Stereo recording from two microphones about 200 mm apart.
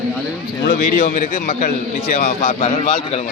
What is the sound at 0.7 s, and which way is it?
A man's voice, 45° left (ahead or behind).